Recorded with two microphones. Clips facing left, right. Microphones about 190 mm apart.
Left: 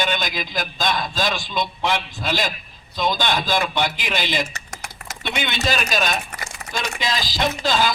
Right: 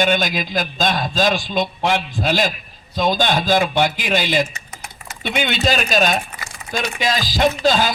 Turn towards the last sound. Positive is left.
turn(degrees=-50)  # may be behind; listen again after turning